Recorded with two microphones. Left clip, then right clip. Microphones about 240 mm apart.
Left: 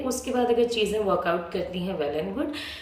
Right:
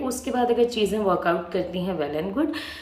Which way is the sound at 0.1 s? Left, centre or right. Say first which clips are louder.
Even; centre.